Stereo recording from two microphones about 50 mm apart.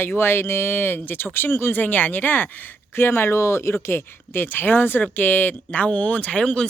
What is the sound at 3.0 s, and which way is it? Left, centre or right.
Speech, left.